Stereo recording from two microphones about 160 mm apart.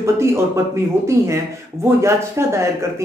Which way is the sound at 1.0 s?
15° right (ahead or behind).